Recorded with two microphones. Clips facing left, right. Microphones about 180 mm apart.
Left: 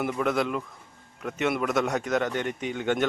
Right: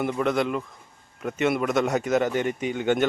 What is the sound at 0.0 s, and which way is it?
Speech, centre (ahead or behind).